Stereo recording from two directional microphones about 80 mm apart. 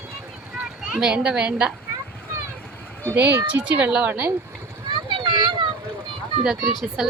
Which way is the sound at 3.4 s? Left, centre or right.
Centre.